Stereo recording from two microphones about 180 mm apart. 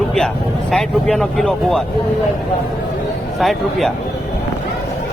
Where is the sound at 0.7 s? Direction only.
5° left (ahead or behind).